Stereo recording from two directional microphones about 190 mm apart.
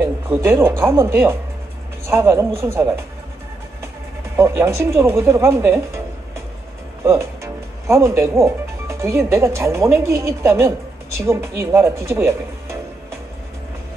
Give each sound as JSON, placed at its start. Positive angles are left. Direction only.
{"t": 0.0, "sound": "speech", "side_deg": -15}
{"t": 4.4, "sound": "speech", "side_deg": -15}
{"t": 7.1, "sound": "speech", "side_deg": -15}